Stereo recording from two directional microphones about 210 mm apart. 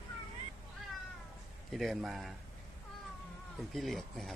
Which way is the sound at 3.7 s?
Centre (ahead or behind).